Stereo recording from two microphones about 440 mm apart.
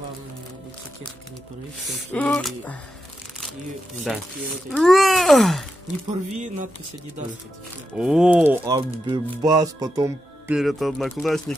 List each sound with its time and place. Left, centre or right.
2.1 s speech: centre
4.0 s speech: centre
6.3 s speech: centre
8.0 s speech: centre